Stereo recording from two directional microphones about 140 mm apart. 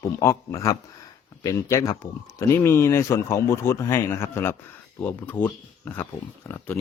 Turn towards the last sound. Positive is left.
turn(degrees=20)  # may be behind; listen again after turning